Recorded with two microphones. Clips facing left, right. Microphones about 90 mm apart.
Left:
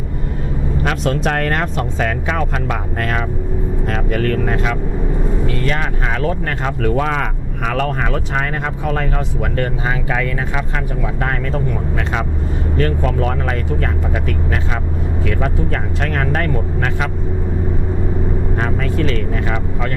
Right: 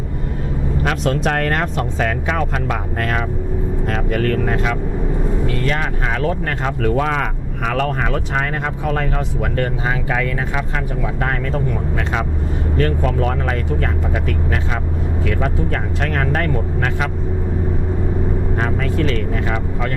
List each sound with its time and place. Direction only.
0.9 s speech: 15° left (ahead or behind)
18.5 s speech: 20° left (ahead or behind)